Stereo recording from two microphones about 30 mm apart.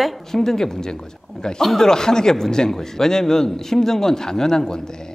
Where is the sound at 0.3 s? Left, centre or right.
Centre.